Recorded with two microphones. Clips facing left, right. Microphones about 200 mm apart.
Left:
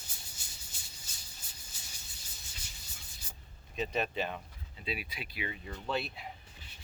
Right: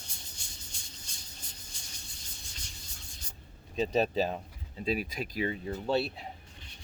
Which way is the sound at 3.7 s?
35° right (ahead or behind).